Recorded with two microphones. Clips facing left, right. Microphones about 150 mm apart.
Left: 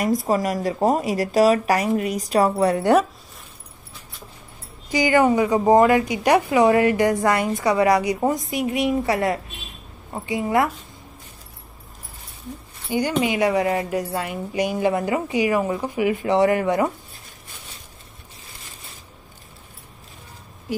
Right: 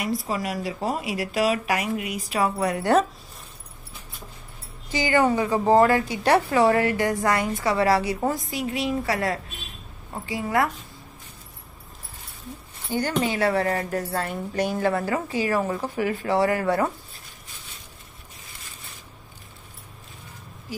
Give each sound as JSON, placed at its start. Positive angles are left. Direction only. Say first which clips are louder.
{"t": 0.0, "sound": "speech", "louder": "left 7 dB", "side_deg": 45}
{"t": 2.8, "sound": "a woman's voice", "louder": "left 1 dB", "side_deg": 15}
{"t": 4.9, "sound": "a woman's voice", "louder": "left 4 dB", "side_deg": 15}
{"t": 12.9, "sound": "a woman's voice", "louder": "left 3 dB", "side_deg": 15}